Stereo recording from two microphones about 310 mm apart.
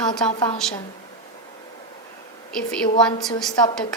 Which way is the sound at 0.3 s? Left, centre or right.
Centre.